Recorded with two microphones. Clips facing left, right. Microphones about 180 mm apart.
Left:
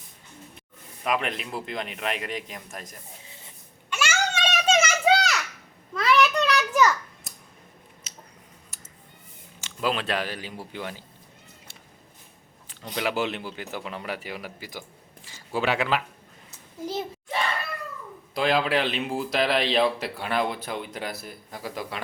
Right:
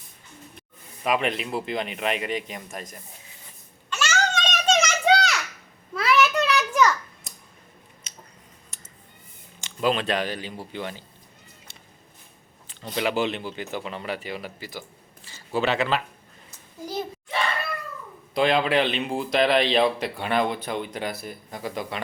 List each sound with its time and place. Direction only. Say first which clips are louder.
1.0 s speech: right 3 dB; centre (ahead or behind)
3.8 s children playing: right 1 dB; 10° left (ahead or behind)
5.9 s a sound: even; 5° right (ahead or behind)
9.6 s speech: right 3 dB; 5° left (ahead or behind)
13.0 s speech: right 2 dB; 5° left (ahead or behind)
16.5 s a sound: left 2 dB; 25° left (ahead or behind)
18.3 s speech: right 2 dB; centre (ahead or behind)